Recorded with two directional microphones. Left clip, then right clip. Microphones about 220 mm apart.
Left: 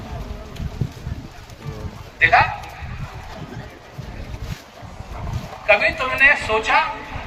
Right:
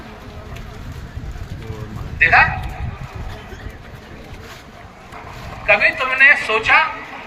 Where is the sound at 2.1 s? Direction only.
25° right (ahead or behind).